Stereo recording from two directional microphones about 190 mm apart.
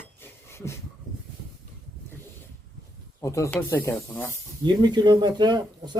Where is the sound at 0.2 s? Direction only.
15° left (ahead or behind).